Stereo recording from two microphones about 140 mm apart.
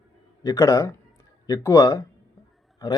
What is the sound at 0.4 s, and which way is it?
A man's voice, 25° left (ahead or behind).